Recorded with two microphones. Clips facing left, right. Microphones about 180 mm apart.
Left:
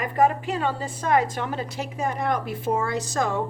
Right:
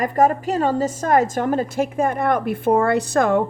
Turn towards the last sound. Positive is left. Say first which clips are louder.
# right 8 dB
turn(degrees=-60)  # may be behind; listen again after turning